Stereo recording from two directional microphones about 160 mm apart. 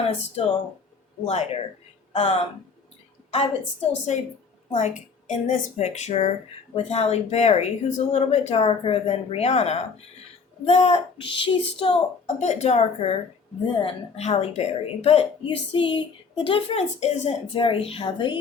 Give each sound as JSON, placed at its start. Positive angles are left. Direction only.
{"t": 0.1, "sound": "a woman's voice", "side_deg": 40}
{"t": 5.3, "sound": "a woman's voice", "side_deg": 55}
{"t": 12.2, "sound": "a woman's voice", "side_deg": 45}